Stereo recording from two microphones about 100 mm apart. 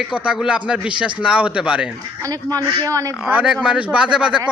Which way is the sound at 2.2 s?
35° right (ahead or behind).